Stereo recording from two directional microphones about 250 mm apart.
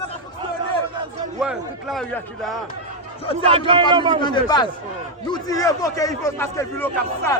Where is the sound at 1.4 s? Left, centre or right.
Centre.